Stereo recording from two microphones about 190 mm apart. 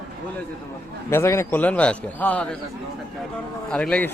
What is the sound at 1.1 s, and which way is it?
A man's voice, 15° left (ahead or behind).